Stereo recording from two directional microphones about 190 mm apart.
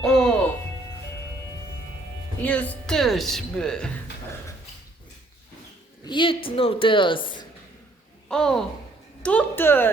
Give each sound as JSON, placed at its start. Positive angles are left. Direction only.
{"t": 0.0, "sound": "music", "side_deg": 5}
{"t": 2.4, "sound": "speech", "side_deg": 10}
{"t": 6.1, "sound": "a woman's voice", "side_deg": 25}
{"t": 8.3, "sound": "a woman's voice", "side_deg": 5}